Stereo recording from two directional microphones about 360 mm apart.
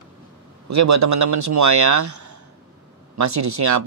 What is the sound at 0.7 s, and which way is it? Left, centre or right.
Speech, right.